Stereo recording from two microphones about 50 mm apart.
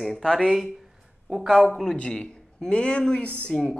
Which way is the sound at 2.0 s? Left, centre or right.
Centre.